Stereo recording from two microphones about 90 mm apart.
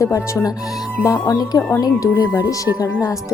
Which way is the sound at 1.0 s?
50° left (ahead or behind).